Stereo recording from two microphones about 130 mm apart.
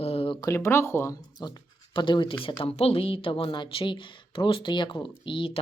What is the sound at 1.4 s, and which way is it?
Speech, 30° left (ahead or behind).